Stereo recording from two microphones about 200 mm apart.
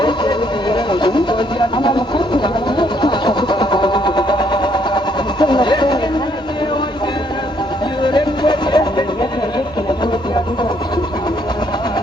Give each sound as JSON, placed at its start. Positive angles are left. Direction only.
{"t": 0.0, "sound": "vehicle", "side_deg": 25}
{"t": 8.0, "sound": "music", "side_deg": 20}